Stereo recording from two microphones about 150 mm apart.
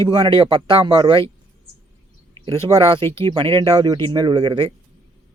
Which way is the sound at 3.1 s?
35° right (ahead or behind).